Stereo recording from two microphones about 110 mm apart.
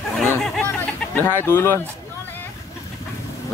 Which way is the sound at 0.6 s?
15° left (ahead or behind).